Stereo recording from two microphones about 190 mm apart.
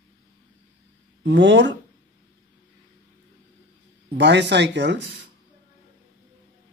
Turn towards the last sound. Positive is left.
turn(degrees=-65)  # may be behind; listen again after turning